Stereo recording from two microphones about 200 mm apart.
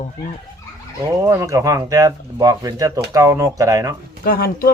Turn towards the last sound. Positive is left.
turn(degrees=45)  # may be behind; listen again after turning